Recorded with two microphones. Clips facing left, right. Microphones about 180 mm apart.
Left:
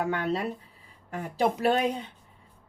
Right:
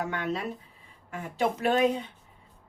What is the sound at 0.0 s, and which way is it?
Speech, 35° left (ahead or behind).